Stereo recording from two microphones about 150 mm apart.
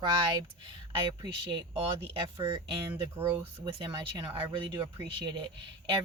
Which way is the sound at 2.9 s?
15° right (ahead or behind).